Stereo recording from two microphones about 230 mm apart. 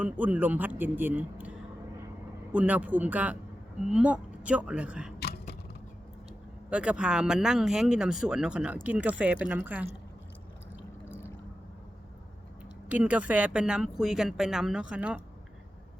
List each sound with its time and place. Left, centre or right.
0.0 s speech: centre
5.2 s a sound: left
6.7 s speech: centre
12.9 s speech: centre